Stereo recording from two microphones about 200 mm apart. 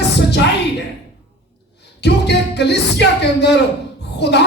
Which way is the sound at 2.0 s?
55° left (ahead or behind).